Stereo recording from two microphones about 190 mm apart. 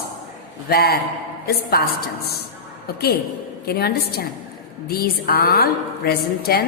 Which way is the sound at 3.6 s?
55° left (ahead or behind).